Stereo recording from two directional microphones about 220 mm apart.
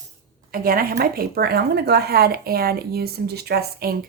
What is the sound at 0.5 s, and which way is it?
Speech, 40° right (ahead or behind).